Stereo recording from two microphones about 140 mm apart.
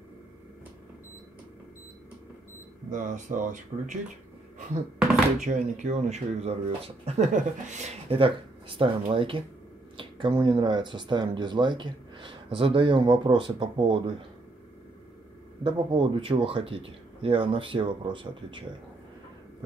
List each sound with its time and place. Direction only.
2.9 s speech: 65° right (ahead or behind)
5.4 s speech: 60° right (ahead or behind)
8.2 s speech: 40° right (ahead or behind)
15.6 s speech: 35° right (ahead or behind)